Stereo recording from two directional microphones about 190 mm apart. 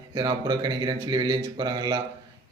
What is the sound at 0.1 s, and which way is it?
A man's voice, 20° right (ahead or behind).